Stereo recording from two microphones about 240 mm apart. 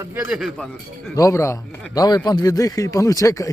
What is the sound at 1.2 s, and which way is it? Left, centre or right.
Speech, centre.